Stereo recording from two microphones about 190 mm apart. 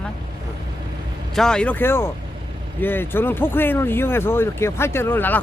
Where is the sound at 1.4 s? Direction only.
5° left (ahead or behind).